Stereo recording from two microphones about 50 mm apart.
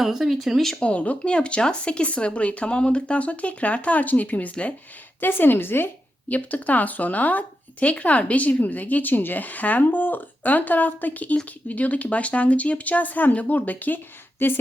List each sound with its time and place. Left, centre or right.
0.0 s speech: centre
0.8 s speech: left
5.2 s speech: left
6.2 s speech: left